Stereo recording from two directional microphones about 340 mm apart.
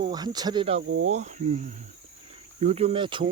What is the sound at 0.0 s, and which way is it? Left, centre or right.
Speech, centre.